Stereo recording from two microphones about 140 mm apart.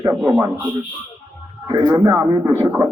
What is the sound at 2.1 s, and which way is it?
Speech, 20° right (ahead or behind).